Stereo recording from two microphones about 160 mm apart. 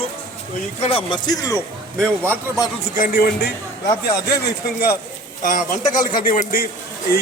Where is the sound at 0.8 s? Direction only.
35° left (ahead or behind).